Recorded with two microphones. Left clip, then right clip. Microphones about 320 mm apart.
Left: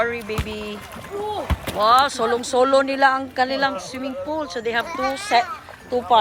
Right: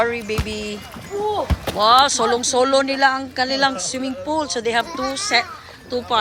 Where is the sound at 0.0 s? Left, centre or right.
Centre.